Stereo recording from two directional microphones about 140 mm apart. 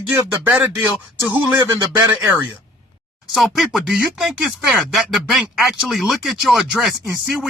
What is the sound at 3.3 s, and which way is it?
Speech, centre (ahead or behind).